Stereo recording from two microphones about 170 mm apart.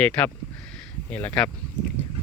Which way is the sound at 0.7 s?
5° left (ahead or behind).